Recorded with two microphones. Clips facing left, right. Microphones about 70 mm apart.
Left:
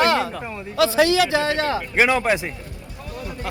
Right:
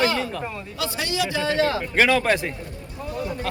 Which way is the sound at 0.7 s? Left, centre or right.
Left.